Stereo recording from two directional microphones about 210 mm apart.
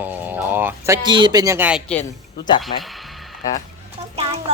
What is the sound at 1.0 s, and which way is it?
Speech, 20° right (ahead or behind).